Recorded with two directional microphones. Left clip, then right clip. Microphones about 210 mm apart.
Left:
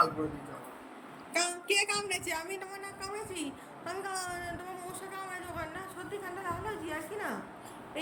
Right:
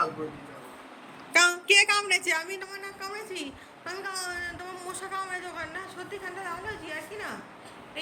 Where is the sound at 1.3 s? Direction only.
5° left (ahead or behind).